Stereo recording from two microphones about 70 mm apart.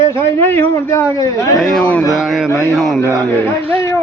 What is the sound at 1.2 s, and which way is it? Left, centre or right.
Speech, left.